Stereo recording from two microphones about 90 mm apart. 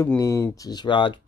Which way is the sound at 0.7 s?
60° left (ahead or behind).